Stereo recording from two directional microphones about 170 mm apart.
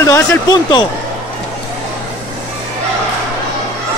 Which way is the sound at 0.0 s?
20° left (ahead or behind).